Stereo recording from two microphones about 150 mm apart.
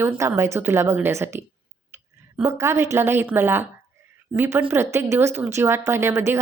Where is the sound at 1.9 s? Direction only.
20° right (ahead or behind).